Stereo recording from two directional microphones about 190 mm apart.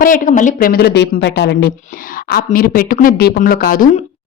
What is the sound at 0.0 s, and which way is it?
Speech, 45° left (ahead or behind).